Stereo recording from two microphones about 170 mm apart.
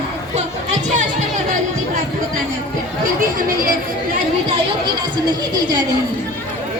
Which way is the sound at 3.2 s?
55° right (ahead or behind).